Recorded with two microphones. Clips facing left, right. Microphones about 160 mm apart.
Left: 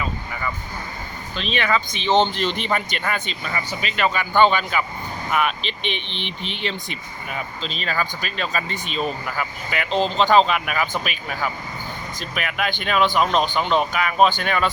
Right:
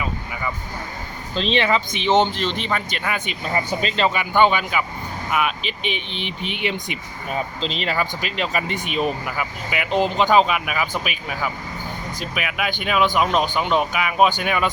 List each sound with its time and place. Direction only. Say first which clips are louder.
1.4 s speech: right 3 dB; 25° right (ahead or behind)
2.3 s a man's voice: left 1 dB; centre (ahead or behind)
3.8 s a man's voice: left 2 dB; 25° right (ahead or behind)